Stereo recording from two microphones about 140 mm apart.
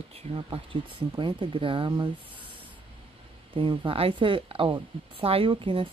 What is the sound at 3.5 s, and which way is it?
Speech, 35° right (ahead or behind).